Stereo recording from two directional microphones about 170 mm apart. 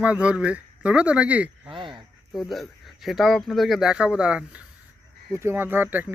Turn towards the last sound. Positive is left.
turn(degrees=-10)  # may be behind; listen again after turning